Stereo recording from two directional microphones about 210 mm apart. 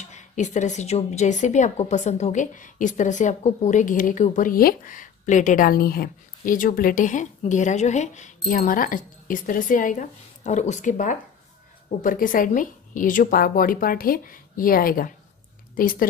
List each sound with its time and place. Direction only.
0.0 s a woman's voice: 35° left (ahead or behind)